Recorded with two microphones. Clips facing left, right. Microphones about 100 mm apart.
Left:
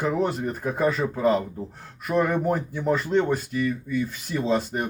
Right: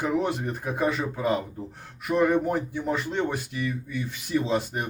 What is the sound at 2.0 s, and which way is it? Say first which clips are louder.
Speech: even; 50° left (ahead or behind).